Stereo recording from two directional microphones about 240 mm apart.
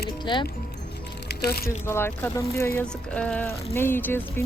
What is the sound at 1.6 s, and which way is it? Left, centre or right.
Speech, centre.